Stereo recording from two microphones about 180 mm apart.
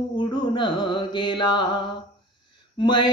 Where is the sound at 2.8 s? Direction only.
25° left (ahead or behind).